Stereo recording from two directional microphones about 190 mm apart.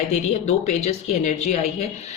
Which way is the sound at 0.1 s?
35° left (ahead or behind).